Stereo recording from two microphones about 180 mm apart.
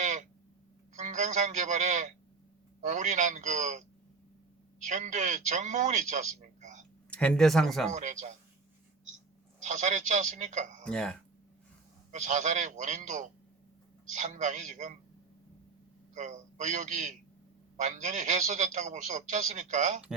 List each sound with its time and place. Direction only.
0.0 s a sound: 40° right (ahead or behind)
0.9 s a man's voice: 40° right (ahead or behind)
4.9 s a man's voice: 40° right (ahead or behind)
7.1 s speech: 5° left (ahead or behind)
7.9 s a man's voice: 40° right (ahead or behind)
9.6 s a man's voice: 45° right (ahead or behind)
10.8 s speech: 5° left (ahead or behind)
12.1 s a man's voice: 40° right (ahead or behind)
16.1 s a man's voice: 45° right (ahead or behind)